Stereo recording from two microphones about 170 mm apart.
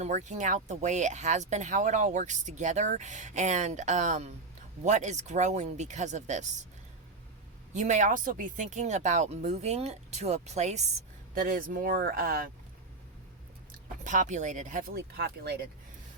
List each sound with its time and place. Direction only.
0.0 s speech: 45° right (ahead or behind)
7.7 s speech: 45° right (ahead or behind)
11.3 s speech: 55° right (ahead or behind)
14.0 s speech: 50° right (ahead or behind); by 15.6 s 70° right (ahead or behind)